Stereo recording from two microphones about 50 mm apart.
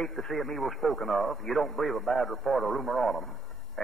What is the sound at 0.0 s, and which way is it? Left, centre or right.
A man's voice, centre.